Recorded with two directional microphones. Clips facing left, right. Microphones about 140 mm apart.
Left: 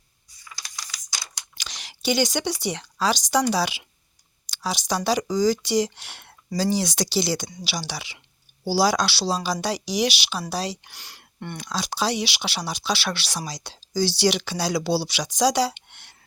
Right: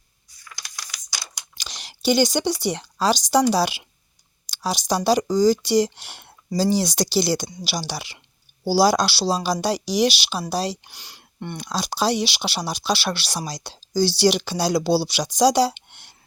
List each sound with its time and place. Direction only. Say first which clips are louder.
0.4 s typing: even; 5° left (ahead or behind)
0.9 s a sound: right 1 dB; 10° right (ahead or behind)
1.5 s whispering: right 1 dB; 30° right (ahead or behind)
2.0 s speech: right 4 dB; 35° right (ahead or behind)
6.0 s speech: right 1 dB; 5° right (ahead or behind)
6.6 s speech: right 3 dB; 35° right (ahead or behind)
10.9 s a sound: right 2 dB; 15° right (ahead or behind)
11.6 s speech: right 3 dB; 35° right (ahead or behind)
15.9 s a sound: right 1 dB; 5° right (ahead or behind)